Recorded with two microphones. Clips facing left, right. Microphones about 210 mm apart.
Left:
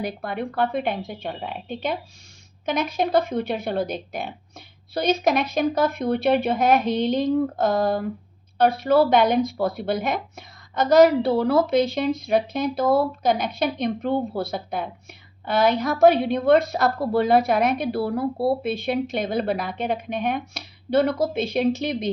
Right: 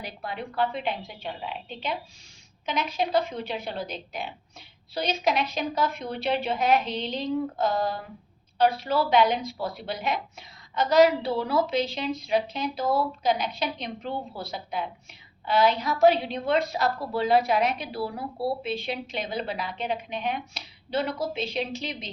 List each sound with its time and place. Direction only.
0.0 s a woman's voice: 50° left (ahead or behind)